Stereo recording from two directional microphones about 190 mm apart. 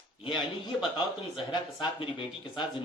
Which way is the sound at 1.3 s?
25° left (ahead or behind).